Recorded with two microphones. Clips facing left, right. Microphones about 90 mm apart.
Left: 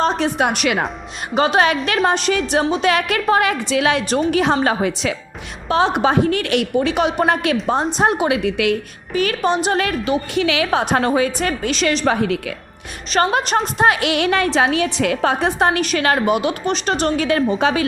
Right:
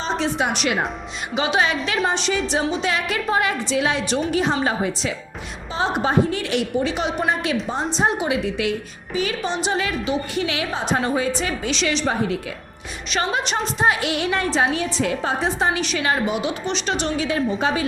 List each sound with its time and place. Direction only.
0.0 s a woman's voice: 55° left (ahead or behind); by 0.9 s 75° left (ahead or behind)
1.4 s a woman's voice: 50° left (ahead or behind); by 8.7 s 65° left (ahead or behind)
9.1 s a woman's voice: 55° left (ahead or behind)
12.0 s a woman's voice: 75° left (ahead or behind)
13.1 s a woman's voice: 50° left (ahead or behind)
13.8 s a woman's voice: 75° left (ahead or behind); by 16.7 s 60° left (ahead or behind)
16.7 s a woman's voice: 45° left (ahead or behind); by 17.8 s 85° left